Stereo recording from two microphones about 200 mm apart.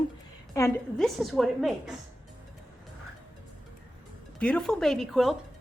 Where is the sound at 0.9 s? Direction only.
Centre (ahead or behind).